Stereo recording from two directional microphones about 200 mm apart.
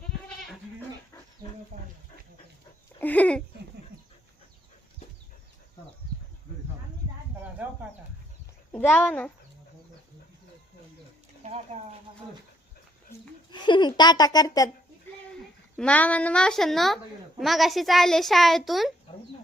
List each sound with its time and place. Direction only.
1.7 s wild animals: 40° right (ahead or behind)
3.0 s a sound: 5° left (ahead or behind)
8.7 s a child's voice: 10° left (ahead or behind)
11.4 s horse: 30° right (ahead or behind)
13.5 s a child's voice: 25° left (ahead or behind)
15.7 s a woman's voice: 5° left (ahead or behind)